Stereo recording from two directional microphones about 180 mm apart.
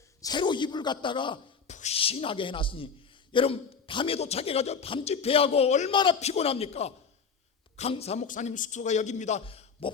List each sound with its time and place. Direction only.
0.2 s a man's voice: 25° left (ahead or behind)
1.6 s a man's voice: 40° left (ahead or behind)
5.9 s a man's voice: 25° left (ahead or behind)